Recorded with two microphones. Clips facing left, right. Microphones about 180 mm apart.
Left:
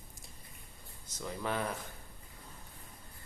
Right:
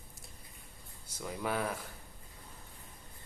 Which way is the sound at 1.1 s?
10° right (ahead or behind).